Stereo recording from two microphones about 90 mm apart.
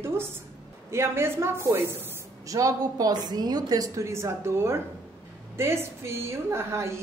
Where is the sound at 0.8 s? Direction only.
30° right (ahead or behind).